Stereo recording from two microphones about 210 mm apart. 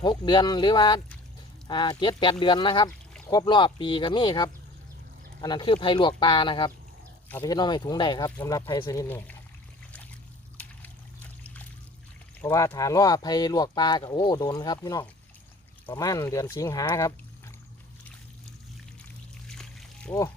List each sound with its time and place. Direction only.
0.0 s speech: 20° left (ahead or behind)
12.5 s speech: 15° left (ahead or behind)
19.5 s splash: 5° left (ahead or behind)